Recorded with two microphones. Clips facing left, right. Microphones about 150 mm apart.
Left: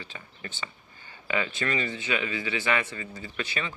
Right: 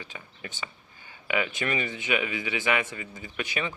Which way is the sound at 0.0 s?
15° right (ahead or behind).